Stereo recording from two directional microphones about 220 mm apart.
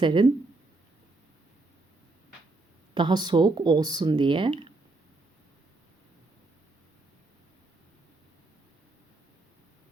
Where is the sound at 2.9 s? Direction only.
20° right (ahead or behind).